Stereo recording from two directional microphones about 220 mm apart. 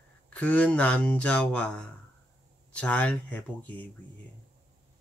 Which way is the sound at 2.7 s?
5° left (ahead or behind).